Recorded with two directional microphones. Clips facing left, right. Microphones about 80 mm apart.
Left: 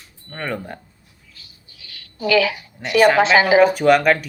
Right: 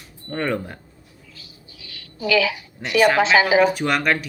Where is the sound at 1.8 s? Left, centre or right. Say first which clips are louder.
Left 2 dB; left.